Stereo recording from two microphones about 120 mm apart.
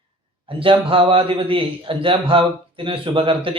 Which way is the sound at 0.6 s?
45° right (ahead or behind).